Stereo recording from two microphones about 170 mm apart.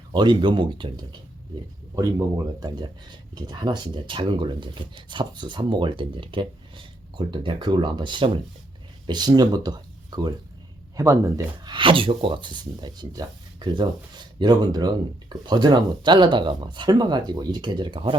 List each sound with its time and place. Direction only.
0.1 s speech: 25° right (ahead or behind)